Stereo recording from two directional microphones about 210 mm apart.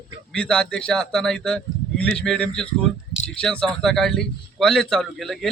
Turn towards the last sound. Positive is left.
turn(degrees=0)  # may be behind; listen again after turning